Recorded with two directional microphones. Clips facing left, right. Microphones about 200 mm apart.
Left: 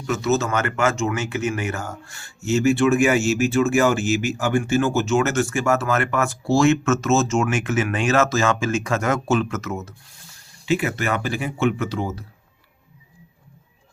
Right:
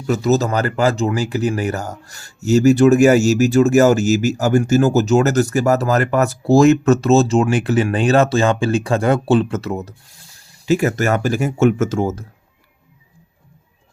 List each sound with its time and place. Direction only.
0.1 s speech: 35° right (ahead or behind)